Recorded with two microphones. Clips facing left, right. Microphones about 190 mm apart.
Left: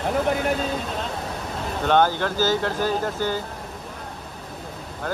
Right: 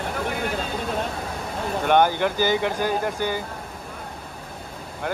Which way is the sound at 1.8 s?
15° right (ahead or behind).